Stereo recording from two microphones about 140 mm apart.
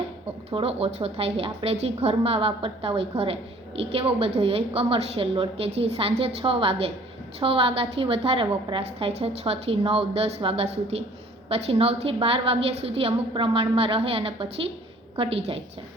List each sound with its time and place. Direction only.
0.5 s a woman's voice: 45° right (ahead or behind)